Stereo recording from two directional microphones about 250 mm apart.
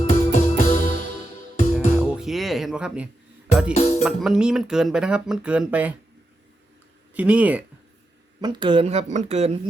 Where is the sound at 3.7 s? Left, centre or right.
Left.